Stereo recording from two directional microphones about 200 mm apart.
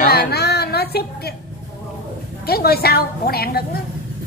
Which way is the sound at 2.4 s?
50° left (ahead or behind).